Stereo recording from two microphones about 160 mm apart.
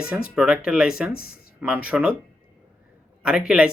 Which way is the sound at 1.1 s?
70° left (ahead or behind).